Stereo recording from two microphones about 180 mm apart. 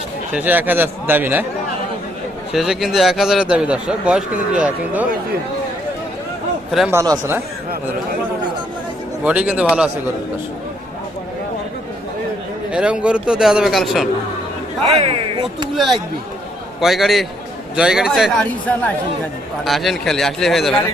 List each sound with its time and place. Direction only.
0.3 s a man's voice: 10° right (ahead or behind)
2.5 s a man's voice: centre (ahead or behind)
6.7 s speech: centre (ahead or behind)
6.9 s a man's voice: 15° right (ahead or behind)
9.2 s a man's voice: 5° right (ahead or behind)
12.7 s a man's voice: 5° right (ahead or behind)
15.0 s speech: 30° right (ahead or behind)
15.7 s a man's voice: centre (ahead or behind)